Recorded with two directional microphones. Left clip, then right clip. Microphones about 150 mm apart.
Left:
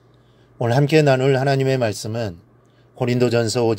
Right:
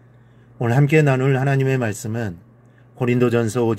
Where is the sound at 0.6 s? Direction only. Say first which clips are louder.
Left 1 dB; 50° left (ahead or behind).